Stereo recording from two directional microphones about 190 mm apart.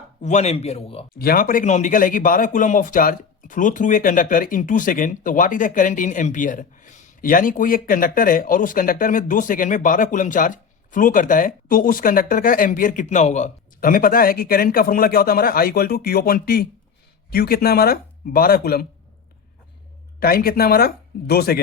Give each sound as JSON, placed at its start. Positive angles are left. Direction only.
{"t": 0.2, "sound": "a man's voice", "side_deg": 35}
{"t": 1.2, "sound": "speech", "side_deg": 50}
{"t": 20.1, "sound": "speech", "side_deg": 50}